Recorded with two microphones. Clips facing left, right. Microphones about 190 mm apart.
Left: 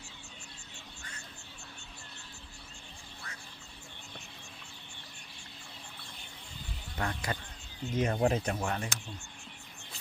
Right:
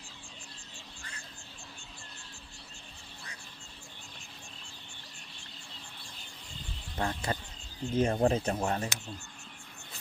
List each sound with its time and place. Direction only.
6.9 s speech: 30° right (ahead or behind)